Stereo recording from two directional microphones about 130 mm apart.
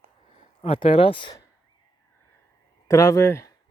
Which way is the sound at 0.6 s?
45° left (ahead or behind).